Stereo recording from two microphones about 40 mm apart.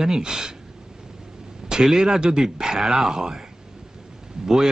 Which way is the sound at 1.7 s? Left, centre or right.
Centre.